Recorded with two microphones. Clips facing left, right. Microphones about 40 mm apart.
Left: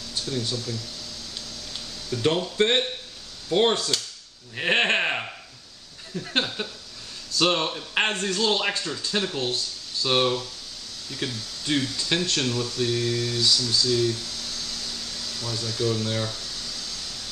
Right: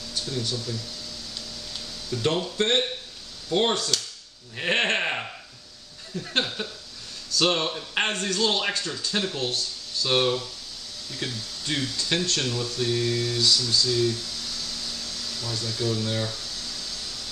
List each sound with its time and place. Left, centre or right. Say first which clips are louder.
0.7 s speech: even; centre
1.7 s a sound: left 1 dB; centre
2.5 s speech: left 2 dB; centre
14.6 s vacuum cleaner: even; centre
15.2 s speech: left 1 dB; centre